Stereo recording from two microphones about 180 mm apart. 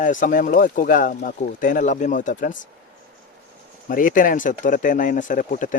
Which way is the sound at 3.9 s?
50° left (ahead or behind).